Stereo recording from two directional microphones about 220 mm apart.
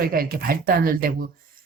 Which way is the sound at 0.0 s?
40° right (ahead or behind).